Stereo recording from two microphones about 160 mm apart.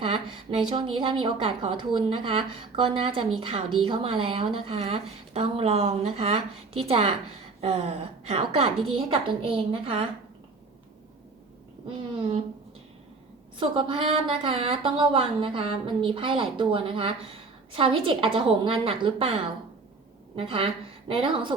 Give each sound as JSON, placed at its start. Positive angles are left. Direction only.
{"t": 0.0, "sound": "speech", "side_deg": -35}
{"t": 13.6, "sound": "speech", "side_deg": -30}